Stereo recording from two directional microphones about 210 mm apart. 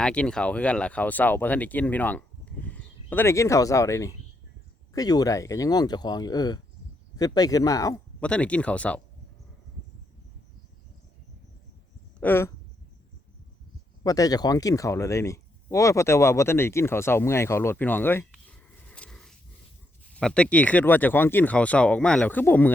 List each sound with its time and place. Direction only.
0.0 s speech: 5° left (ahead or behind)
8.2 s speech: 5° left (ahead or behind)
12.2 s speech: 10° left (ahead or behind)
14.0 s speech: 15° left (ahead or behind)